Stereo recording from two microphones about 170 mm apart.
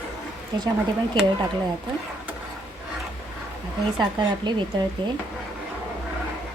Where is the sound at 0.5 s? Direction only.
25° right (ahead or behind).